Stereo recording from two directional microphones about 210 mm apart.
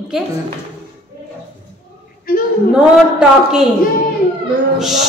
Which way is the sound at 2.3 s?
45° left (ahead or behind).